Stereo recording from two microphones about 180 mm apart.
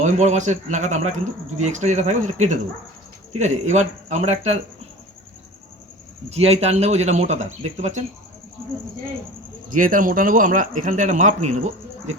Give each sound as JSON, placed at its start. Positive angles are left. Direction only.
{"t": 0.0, "sound": "speech", "side_deg": -40}
{"t": 6.3, "sound": "speech", "side_deg": -35}
{"t": 9.6, "sound": "speech", "side_deg": -50}